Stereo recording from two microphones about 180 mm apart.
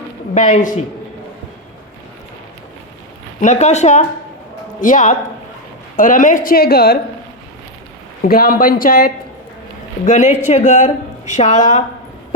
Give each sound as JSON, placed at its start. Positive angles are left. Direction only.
{"t": 0.3, "sound": "speech", "side_deg": 45}
{"t": 3.4, "sound": "a woman's voice", "side_deg": 40}
{"t": 8.2, "sound": "speech", "side_deg": 55}
{"t": 10.1, "sound": "a woman's voice", "side_deg": 40}